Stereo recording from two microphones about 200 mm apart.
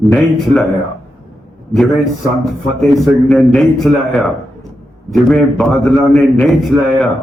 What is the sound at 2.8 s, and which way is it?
A man's voice, centre (ahead or behind).